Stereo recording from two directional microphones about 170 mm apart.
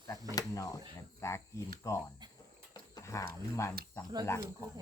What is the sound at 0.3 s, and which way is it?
Cricket, 20° left (ahead or behind).